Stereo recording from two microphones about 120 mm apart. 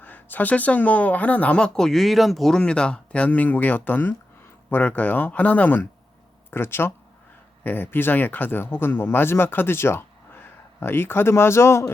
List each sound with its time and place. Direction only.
0.0 s speech: 15° left (ahead or behind)